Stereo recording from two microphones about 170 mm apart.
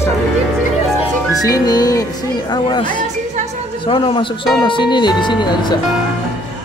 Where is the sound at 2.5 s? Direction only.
25° left (ahead or behind).